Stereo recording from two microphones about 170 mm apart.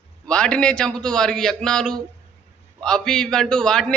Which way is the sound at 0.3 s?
5° left (ahead or behind).